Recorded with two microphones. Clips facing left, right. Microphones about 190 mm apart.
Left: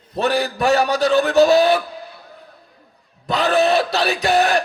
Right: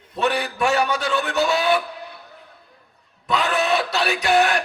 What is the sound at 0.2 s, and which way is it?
A man's voice, 40° left (ahead or behind).